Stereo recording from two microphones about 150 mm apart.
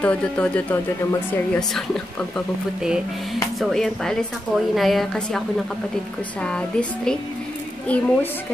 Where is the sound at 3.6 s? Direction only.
5° left (ahead or behind).